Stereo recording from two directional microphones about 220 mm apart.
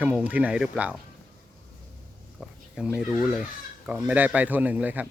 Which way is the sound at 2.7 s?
5° right (ahead or behind).